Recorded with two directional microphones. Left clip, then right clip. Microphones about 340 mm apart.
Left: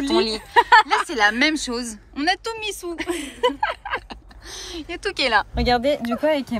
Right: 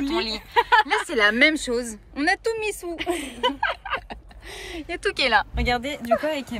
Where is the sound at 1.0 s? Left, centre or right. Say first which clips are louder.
Even; centre.